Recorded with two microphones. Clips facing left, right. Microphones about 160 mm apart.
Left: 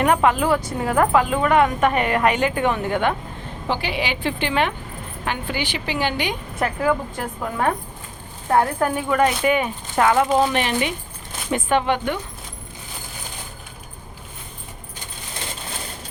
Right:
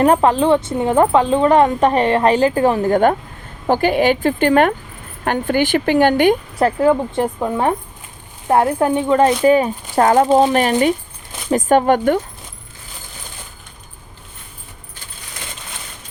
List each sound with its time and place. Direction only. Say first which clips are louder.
0.0 s a woman's voice: right 5 dB; 35° right (ahead or behind); by 6.3 s 50° right (ahead or behind)
6.6 s a woman's voice: right 3 dB; 30° right (ahead or behind)